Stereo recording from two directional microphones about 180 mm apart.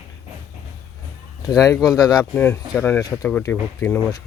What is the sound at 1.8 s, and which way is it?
Speech, centre (ahead or behind).